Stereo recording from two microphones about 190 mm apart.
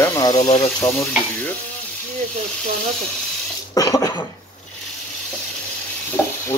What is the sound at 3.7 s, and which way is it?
Cough, 20° left (ahead or behind).